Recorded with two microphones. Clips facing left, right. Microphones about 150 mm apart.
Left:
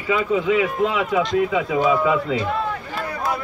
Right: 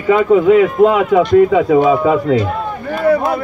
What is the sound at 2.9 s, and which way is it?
Run, 60° right (ahead or behind).